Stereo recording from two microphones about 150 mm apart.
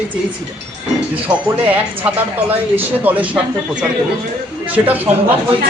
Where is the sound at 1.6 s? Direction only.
10° right (ahead or behind).